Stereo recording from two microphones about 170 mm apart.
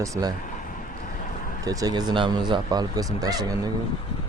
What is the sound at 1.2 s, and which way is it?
Vehicle, 50° left (ahead or behind).